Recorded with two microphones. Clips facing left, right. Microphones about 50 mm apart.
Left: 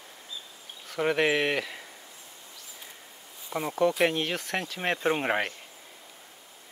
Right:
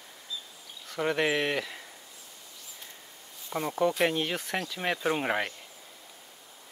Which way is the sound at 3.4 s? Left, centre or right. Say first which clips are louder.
Left 2 dB; centre.